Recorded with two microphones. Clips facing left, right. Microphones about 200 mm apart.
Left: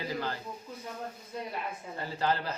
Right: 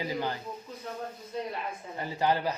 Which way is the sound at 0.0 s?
15° right (ahead or behind).